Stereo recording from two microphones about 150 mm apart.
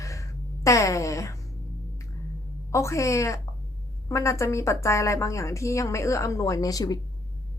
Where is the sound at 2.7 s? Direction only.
20° left (ahead or behind).